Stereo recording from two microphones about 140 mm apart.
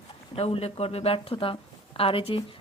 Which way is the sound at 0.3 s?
45° left (ahead or behind).